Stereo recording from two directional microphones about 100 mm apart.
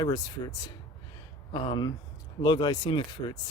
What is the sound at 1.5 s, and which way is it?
Speech, 50° left (ahead or behind).